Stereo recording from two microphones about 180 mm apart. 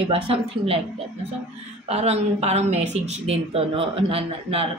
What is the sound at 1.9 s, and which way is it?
Speech, 35° right (ahead or behind).